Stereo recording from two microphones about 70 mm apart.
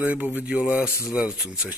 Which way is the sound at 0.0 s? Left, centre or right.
Right.